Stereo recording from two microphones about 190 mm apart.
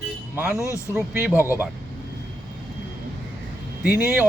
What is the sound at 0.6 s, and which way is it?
Speech, 15° left (ahead or behind).